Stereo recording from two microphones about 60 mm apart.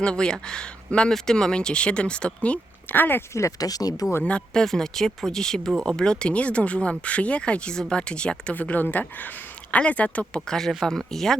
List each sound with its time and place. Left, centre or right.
0.0 s speech: centre
2.9 s speech: left
3.3 s speech: left
4.2 s speech: centre
4.6 s speech: centre
8.5 s speech: left
10.4 s speech: centre